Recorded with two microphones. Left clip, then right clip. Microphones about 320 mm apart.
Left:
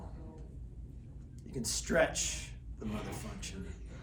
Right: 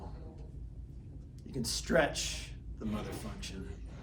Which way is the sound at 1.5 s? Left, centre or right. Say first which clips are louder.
Right 2 dB; centre.